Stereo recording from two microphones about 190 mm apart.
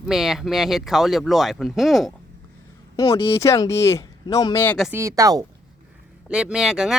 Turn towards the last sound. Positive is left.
turn(degrees=-5)  # may be behind; listen again after turning